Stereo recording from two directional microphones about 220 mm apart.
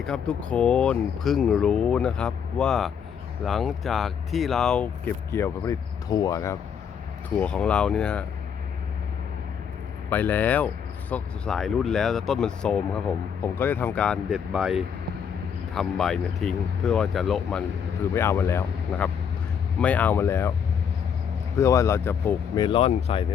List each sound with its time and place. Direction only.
0.0 s speech: 5° left (ahead or behind)
10.1 s speech: 10° left (ahead or behind)
18.1 s speech: 10° left (ahead or behind)
21.6 s speech: 15° left (ahead or behind)
22.6 s speech: 25° left (ahead or behind)